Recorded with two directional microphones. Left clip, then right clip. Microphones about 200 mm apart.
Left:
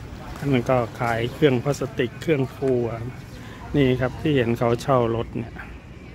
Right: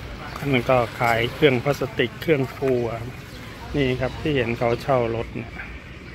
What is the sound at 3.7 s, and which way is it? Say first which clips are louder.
Speech: left 2 dB; 35° left (ahead or behind).